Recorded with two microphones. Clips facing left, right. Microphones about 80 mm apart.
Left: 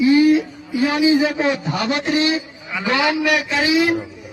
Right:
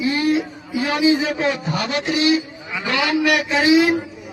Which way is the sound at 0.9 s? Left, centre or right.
Centre.